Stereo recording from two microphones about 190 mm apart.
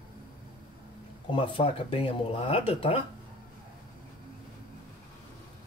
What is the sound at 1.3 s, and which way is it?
Speech, 25° left (ahead or behind).